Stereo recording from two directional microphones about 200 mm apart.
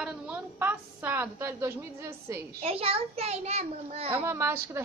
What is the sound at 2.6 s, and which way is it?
A child's voice, 30° right (ahead or behind).